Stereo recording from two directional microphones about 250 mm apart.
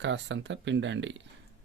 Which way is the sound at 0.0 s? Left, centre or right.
Right.